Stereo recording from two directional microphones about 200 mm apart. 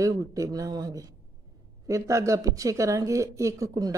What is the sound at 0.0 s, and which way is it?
Speech, 15° right (ahead or behind).